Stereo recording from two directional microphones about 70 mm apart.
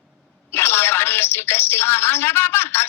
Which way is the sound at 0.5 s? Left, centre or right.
Left.